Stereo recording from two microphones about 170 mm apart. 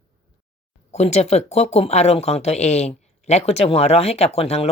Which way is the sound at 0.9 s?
40° left (ahead or behind).